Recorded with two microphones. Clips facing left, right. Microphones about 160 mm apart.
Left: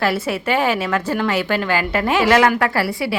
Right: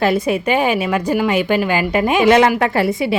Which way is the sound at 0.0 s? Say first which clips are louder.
Right 4 dB; 20° right (ahead or behind).